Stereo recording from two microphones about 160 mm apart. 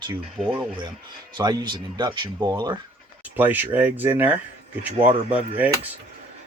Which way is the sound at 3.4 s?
10° right (ahead or behind).